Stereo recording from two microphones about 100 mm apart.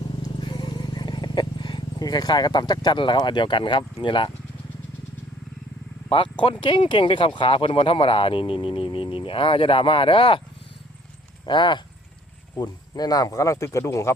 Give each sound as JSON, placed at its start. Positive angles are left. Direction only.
{"t": 0.3, "sound": "wild animals", "side_deg": 50}
{"t": 6.1, "sound": "speech", "side_deg": 60}
{"t": 11.4, "sound": "speech", "side_deg": 50}
{"t": 12.5, "sound": "speech", "side_deg": 40}